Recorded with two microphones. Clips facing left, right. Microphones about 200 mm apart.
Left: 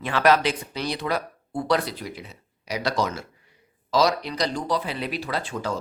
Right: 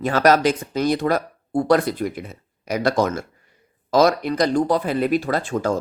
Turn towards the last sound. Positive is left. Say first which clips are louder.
# right 7 dB
turn(degrees=-50)  # may be behind; listen again after turning